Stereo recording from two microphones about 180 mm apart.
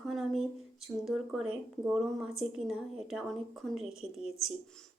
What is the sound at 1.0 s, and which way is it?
Speech, centre (ahead or behind).